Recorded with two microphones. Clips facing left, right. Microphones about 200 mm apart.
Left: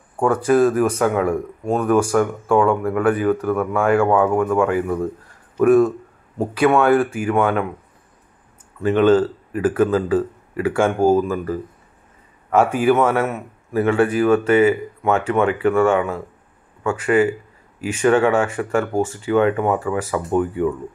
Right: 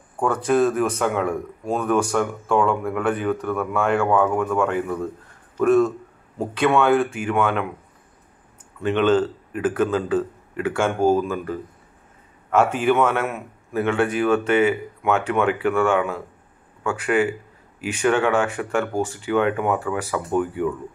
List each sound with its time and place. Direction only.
0.2 s a man's voice: 10° left (ahead or behind)
8.8 s a man's voice: 5° left (ahead or behind)
20.3 s speech: 25° left (ahead or behind)